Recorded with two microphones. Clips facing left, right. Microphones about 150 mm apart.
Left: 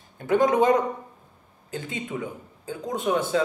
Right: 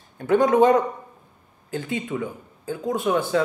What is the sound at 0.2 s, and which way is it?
Speech, 20° left (ahead or behind).